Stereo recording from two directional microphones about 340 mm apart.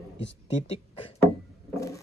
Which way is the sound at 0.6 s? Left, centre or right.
Centre.